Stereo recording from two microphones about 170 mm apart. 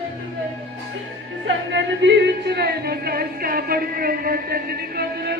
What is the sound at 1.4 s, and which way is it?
Music, 90° right.